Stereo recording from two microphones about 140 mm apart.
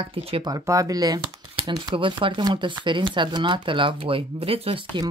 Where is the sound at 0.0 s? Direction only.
40° right (ahead or behind).